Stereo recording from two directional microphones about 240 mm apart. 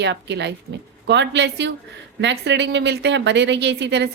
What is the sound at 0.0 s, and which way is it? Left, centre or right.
Speech, right.